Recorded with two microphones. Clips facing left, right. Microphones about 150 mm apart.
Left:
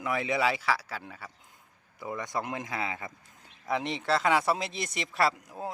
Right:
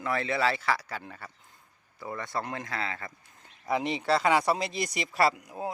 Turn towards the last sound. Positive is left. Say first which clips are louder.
# right 2 dB
turn(degrees=0)  # may be behind; listen again after turning